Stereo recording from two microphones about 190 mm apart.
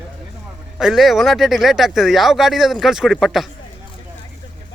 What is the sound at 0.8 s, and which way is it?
Speech, centre (ahead or behind).